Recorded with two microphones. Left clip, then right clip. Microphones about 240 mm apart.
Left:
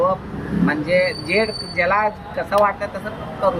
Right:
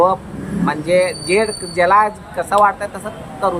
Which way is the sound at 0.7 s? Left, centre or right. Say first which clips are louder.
Right 3 dB; centre.